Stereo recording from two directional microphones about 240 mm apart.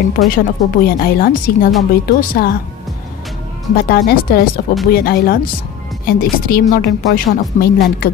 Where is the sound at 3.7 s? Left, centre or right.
Left.